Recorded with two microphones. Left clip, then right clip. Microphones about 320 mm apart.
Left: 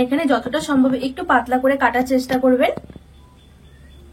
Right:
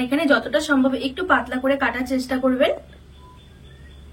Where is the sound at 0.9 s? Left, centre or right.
Centre.